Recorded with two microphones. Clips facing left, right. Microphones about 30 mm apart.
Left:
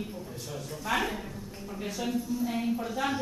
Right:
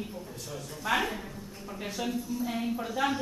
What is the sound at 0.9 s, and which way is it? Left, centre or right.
Speech, centre.